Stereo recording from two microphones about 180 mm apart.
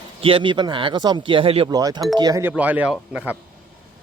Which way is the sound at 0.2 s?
30° right (ahead or behind).